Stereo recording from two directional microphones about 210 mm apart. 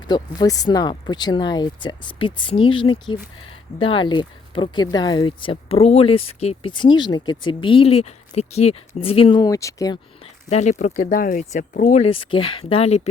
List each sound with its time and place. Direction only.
0.1 s speech: 20° left (ahead or behind)
10.5 s speech: 35° left (ahead or behind)